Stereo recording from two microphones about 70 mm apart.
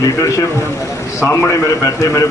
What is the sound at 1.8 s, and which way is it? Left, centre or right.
Speech, left.